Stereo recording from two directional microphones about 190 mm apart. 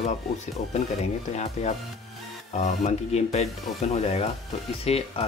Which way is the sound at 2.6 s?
35° left (ahead or behind).